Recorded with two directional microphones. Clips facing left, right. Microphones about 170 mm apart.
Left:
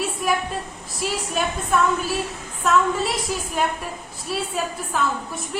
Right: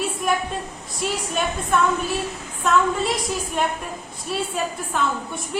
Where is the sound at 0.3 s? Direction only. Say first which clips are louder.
Even; centre (ahead or behind).